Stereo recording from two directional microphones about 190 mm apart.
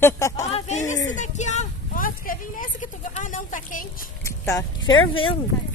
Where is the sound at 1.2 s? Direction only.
40° left (ahead or behind).